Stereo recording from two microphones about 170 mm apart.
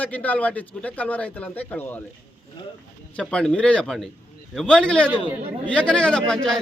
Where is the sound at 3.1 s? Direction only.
5° left (ahead or behind).